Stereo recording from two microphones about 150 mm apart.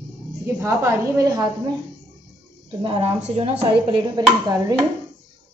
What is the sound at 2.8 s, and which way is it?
Speech, 40° right (ahead or behind).